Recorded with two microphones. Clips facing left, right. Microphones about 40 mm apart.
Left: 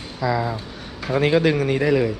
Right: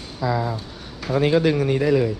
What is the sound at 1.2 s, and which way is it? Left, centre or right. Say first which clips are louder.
Speech: even; left.